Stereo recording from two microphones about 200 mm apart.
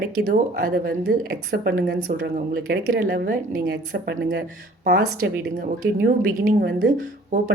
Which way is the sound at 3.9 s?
55° right (ahead or behind).